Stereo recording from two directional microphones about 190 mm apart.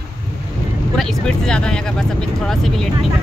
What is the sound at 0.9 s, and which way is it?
Speech, 5° left (ahead or behind).